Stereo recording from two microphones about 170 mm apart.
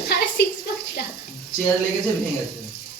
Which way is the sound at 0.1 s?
75° left (ahead or behind).